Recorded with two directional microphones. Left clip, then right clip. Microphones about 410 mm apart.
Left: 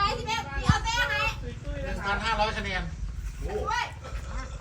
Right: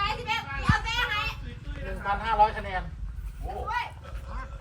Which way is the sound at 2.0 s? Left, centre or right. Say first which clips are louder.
Right 4 dB; centre.